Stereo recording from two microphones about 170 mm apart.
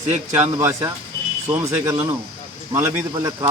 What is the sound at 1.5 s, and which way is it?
A man's voice, 20° right (ahead or behind).